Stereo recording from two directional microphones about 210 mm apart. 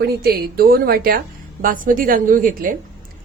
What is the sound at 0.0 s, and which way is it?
A woman's voice, 45° right (ahead or behind).